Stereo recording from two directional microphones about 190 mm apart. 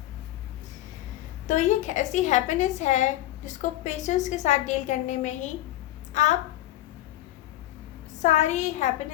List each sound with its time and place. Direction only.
1.5 s a woman's voice: 40° left (ahead or behind)
8.2 s a woman's voice: 40° left (ahead or behind)